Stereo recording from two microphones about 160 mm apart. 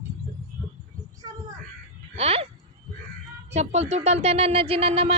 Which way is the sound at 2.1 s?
40° right (ahead or behind).